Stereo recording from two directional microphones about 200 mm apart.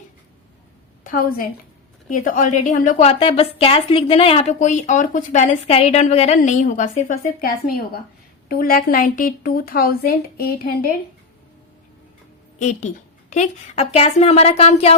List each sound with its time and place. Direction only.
1.0 s a woman's voice: 45° left (ahead or behind)
12.5 s a woman's voice: 35° left (ahead or behind)